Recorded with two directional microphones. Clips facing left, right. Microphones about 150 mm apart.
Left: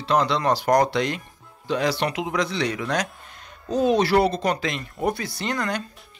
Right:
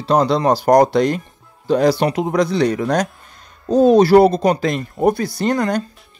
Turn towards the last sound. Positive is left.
turn(degrees=-40)  # may be behind; listen again after turning